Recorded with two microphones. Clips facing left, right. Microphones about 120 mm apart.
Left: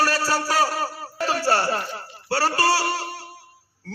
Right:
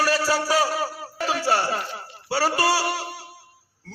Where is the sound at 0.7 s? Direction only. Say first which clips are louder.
Even; 10° right (ahead or behind).